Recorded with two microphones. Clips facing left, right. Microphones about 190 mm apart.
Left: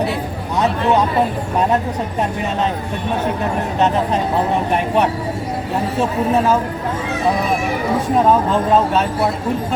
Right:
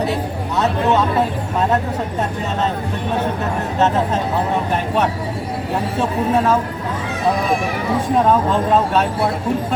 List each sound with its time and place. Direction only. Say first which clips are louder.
8.3 s speech: left 2 dB; 5° left (ahead or behind)